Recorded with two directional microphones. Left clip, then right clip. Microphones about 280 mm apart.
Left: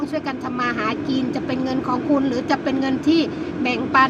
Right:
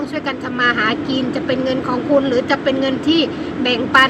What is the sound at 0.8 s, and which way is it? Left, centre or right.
Speech, centre.